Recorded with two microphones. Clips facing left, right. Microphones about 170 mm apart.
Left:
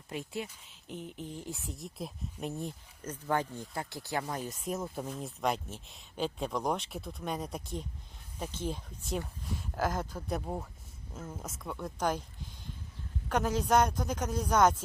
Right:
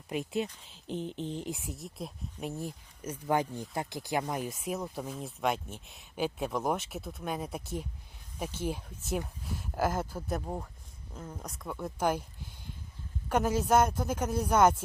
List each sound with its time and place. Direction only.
0.1 s speech: 20° right (ahead or behind)
0.9 s speech: 30° right (ahead or behind)
1.7 s speech: centre (ahead or behind)
13.2 s speech: 10° right (ahead or behind)